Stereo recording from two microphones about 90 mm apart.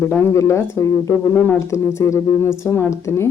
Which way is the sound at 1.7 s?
35° left (ahead or behind).